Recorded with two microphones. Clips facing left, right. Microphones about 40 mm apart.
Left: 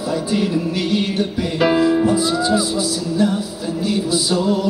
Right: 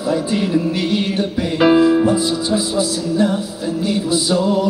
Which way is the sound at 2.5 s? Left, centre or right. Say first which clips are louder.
Right 1 dB; right.